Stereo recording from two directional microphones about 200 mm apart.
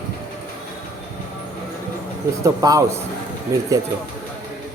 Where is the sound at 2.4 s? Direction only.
15° right (ahead or behind).